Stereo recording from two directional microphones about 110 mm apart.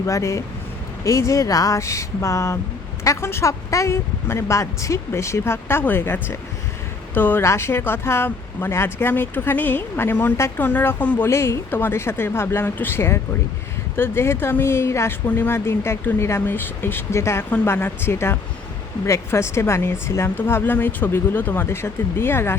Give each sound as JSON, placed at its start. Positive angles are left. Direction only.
{"t": 0.0, "sound": "speech", "side_deg": 30}